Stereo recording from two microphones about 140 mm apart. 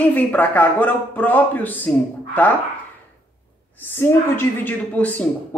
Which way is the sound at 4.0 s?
15° left (ahead or behind).